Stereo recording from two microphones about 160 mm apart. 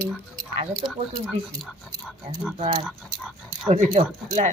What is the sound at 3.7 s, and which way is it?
Speech, 50° right (ahead or behind).